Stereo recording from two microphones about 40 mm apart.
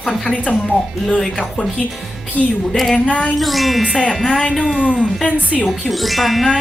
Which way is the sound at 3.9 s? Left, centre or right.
Left.